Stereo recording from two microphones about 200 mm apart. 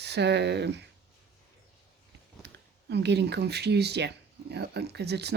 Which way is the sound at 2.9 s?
60° right (ahead or behind).